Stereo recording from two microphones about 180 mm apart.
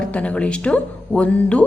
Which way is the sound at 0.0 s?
5° left (ahead or behind).